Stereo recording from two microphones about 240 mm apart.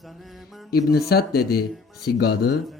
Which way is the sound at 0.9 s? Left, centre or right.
Left.